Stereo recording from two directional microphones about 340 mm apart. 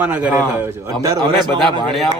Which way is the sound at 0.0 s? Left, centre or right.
Centre.